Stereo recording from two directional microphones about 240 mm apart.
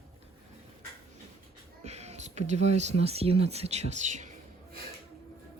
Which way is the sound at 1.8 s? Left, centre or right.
Right.